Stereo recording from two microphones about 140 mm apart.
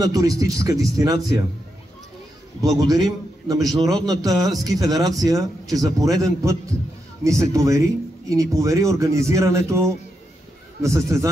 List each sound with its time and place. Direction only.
0.0 s speech: 25° right (ahead or behind)
2.6 s a man's voice: 25° right (ahead or behind)